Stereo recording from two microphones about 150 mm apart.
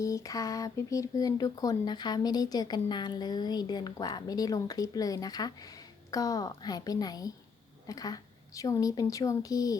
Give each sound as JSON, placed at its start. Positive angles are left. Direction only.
{"t": 0.0, "sound": "speech", "side_deg": 20}